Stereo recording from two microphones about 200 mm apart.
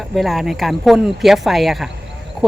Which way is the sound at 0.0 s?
Centre (ahead or behind).